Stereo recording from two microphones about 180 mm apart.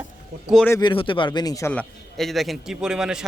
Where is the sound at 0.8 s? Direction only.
25° left (ahead or behind).